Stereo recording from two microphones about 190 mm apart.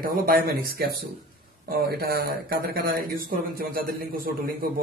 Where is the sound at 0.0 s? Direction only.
50° right (ahead or behind).